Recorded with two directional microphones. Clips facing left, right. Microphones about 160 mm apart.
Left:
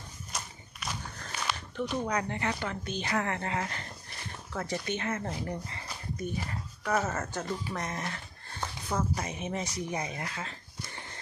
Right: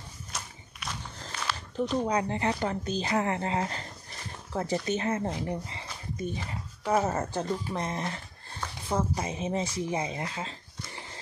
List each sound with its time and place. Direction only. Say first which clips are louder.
0.3 s walk: left 1 dB; centre (ahead or behind)
2.0 s speech: right 4 dB; 25° right (ahead or behind)